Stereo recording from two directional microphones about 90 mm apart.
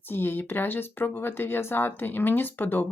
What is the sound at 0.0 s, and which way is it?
A woman's voice, 25° left (ahead or behind).